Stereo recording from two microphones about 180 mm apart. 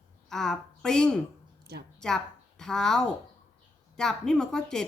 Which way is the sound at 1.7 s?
65° right (ahead or behind).